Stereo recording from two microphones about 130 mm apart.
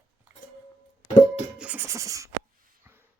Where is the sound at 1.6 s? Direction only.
10° right (ahead or behind).